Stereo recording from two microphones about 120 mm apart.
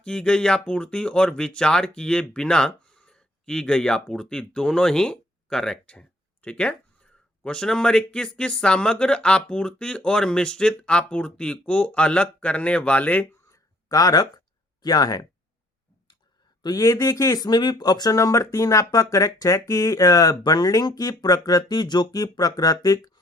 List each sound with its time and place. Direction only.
0.0 s speech: 5° left (ahead or behind)
13.5 s a sound: 30° left (ahead or behind)
16.6 s speech: 30° left (ahead or behind)